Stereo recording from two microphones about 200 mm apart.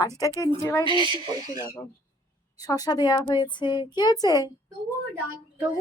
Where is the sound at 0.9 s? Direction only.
25° right (ahead or behind).